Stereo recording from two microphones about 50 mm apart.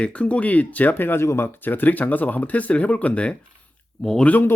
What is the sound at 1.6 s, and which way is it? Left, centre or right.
Speech, left.